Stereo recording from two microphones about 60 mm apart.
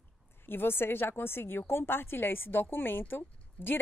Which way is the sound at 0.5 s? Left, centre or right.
Left.